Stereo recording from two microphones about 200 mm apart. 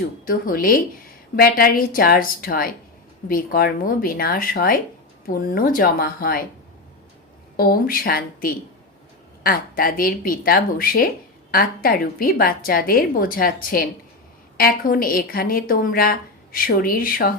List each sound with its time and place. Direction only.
0.3 s speech: 45° left (ahead or behind)
7.5 s speech: 50° left (ahead or behind)